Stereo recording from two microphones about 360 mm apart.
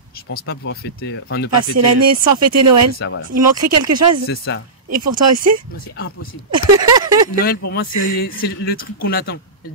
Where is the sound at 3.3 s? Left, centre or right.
Right.